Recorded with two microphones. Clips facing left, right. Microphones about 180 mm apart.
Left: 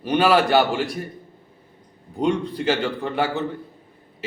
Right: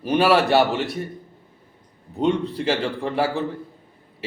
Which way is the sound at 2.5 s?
30° right (ahead or behind).